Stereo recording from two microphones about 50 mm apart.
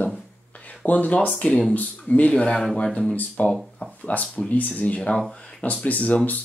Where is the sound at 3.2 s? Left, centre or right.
Left.